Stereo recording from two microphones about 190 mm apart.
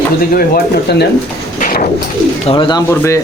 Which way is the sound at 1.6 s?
50° left (ahead or behind).